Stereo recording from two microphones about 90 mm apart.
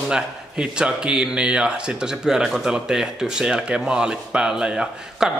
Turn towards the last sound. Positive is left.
turn(degrees=-10)  # may be behind; listen again after turning